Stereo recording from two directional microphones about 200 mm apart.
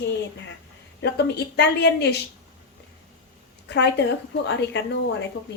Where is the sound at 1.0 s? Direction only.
55° left (ahead or behind).